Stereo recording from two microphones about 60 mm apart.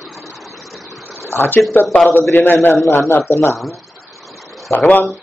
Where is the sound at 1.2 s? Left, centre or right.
Left.